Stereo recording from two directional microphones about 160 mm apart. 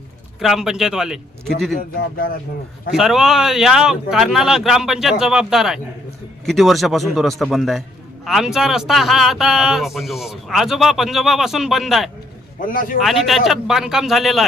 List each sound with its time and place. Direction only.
0.3 s a man's voice: centre (ahead or behind)
2.1 s speech: 65° left (ahead or behind)
2.9 s a man's voice: 5° right (ahead or behind)
12.5 s speech: 60° left (ahead or behind)
13.0 s a man's voice: centre (ahead or behind)